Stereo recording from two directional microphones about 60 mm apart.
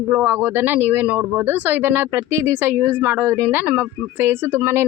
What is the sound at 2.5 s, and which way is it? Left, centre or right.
Speech, right.